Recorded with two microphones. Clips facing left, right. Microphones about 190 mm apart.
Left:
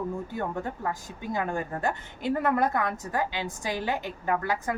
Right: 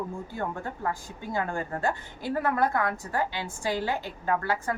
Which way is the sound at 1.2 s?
20° left (ahead or behind).